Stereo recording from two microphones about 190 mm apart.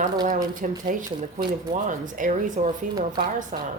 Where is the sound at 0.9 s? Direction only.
45° right (ahead or behind).